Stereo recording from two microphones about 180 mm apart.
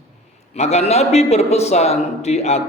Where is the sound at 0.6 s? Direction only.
35° left (ahead or behind).